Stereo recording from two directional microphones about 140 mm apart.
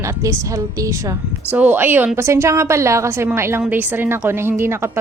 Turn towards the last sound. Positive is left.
turn(degrees=-15)  # may be behind; listen again after turning